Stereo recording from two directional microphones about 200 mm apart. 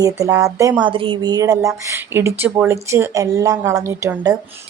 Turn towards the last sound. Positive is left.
turn(degrees=-15)  # may be behind; listen again after turning